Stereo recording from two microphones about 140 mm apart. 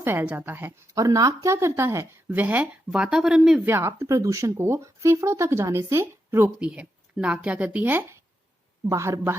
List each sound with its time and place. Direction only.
0.0 s speech: 15° right (ahead or behind)
3.7 s speech: 15° right (ahead or behind)